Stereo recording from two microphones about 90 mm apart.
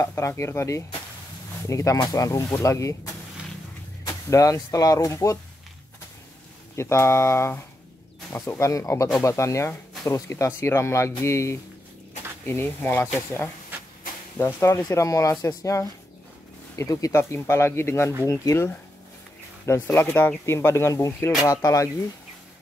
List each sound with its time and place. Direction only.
0.0 s speech: 30° left (ahead or behind)
4.0 s vehicle: 40° left (ahead or behind)
4.7 s speech: 40° left (ahead or behind)
6.8 s speech: 30° left (ahead or behind)
17.2 s speech: 30° left (ahead or behind)